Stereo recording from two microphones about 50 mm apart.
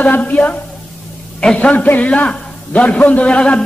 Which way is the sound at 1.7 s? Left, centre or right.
Left.